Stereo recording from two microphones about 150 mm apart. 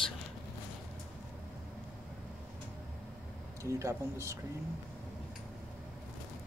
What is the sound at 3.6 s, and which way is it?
Speech, 20° right (ahead or behind).